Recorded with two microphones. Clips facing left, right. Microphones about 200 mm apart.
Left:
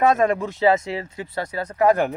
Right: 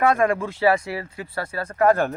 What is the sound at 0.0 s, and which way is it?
Speech, 20° left (ahead or behind).